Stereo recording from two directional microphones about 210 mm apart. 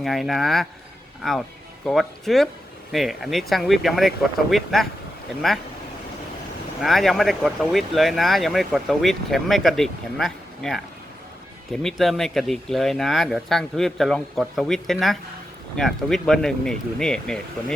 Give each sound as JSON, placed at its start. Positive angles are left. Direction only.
{"t": 0.0, "sound": "speech", "side_deg": 0}
{"t": 6.8, "sound": "speech", "side_deg": 0}